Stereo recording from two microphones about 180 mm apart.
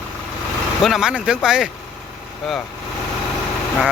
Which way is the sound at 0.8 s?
Centre (ahead or behind).